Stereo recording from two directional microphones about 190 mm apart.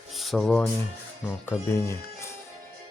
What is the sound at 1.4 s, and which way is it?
Speech, 10° left (ahead or behind).